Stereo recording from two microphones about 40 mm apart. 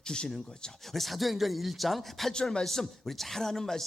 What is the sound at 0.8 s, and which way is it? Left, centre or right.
A man's voice, centre.